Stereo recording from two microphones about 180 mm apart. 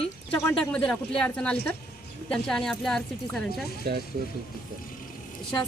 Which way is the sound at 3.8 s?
65° right (ahead or behind).